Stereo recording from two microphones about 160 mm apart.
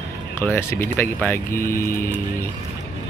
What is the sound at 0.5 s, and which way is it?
Speech, 15° left (ahead or behind).